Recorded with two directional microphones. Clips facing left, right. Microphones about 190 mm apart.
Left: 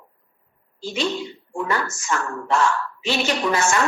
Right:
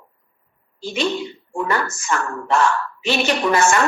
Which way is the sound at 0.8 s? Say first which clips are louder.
Right 2 dB; 60° right (ahead or behind).